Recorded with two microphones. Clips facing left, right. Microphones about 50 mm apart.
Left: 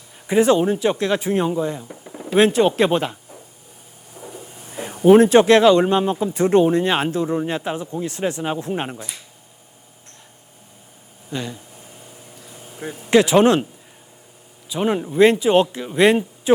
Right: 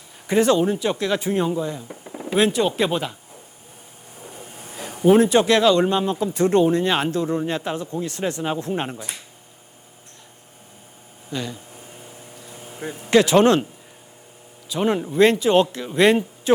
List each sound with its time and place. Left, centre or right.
0.3 s speech: centre
1.9 s a sound: centre
2.4 s speech: left
4.7 s a sound: left
5.0 s speech: left; by 9.0 s centre
11.3 s speech: centre
12.4 s vehicle: centre
13.1 s speech: centre
14.8 s speech: centre
15.2 s speech: centre